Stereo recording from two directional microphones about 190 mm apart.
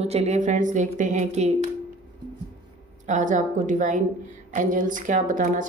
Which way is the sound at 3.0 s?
40° right (ahead or behind).